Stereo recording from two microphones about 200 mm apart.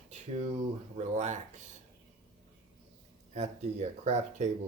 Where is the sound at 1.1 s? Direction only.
35° right (ahead or behind).